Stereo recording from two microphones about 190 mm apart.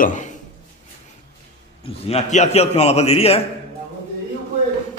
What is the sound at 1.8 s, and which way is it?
A man's voice, 35° left (ahead or behind).